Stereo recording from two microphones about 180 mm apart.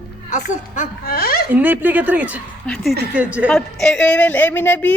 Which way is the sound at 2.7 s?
5° left (ahead or behind).